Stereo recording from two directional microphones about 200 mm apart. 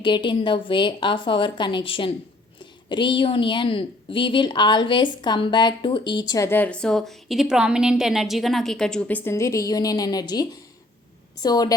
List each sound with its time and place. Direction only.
0.0 s a woman's voice: 25° left (ahead or behind)